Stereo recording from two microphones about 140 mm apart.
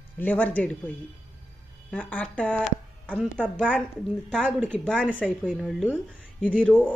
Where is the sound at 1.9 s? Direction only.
10° left (ahead or behind).